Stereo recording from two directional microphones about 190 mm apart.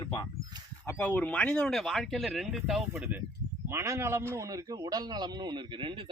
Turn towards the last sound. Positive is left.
turn(degrees=-25)  # may be behind; listen again after turning